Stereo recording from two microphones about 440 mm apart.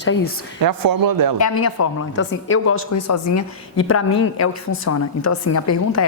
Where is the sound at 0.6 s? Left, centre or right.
Right.